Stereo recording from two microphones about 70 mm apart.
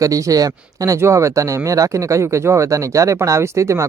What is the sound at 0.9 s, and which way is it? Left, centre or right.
Speech, right.